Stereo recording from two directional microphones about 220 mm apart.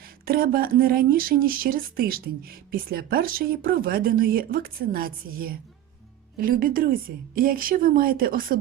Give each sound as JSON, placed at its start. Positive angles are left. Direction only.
{"t": 0.0, "sound": "speech", "side_deg": -40}